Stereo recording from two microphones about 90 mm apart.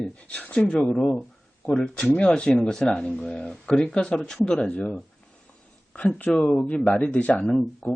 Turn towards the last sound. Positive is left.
turn(degrees=10)  # may be behind; listen again after turning